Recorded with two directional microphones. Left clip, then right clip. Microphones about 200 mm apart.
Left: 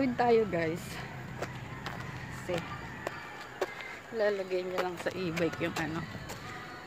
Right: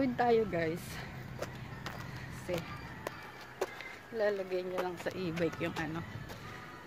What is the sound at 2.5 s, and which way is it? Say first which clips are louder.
Speech: left 3 dB; 5° right (ahead or behind).